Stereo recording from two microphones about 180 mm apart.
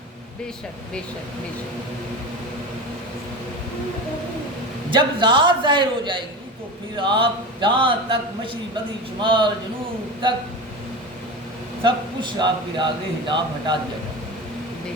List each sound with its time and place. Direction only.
4.9 s a man's voice: 25° right (ahead or behind)
9.2 s a man's voice: 30° right (ahead or behind)
11.8 s a man's voice: 25° right (ahead or behind)